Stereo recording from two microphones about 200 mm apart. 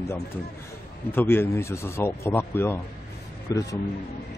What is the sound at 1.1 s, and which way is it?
A man's voice, 10° left (ahead or behind).